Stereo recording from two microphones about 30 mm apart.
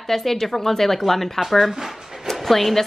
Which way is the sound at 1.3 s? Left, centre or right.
Centre.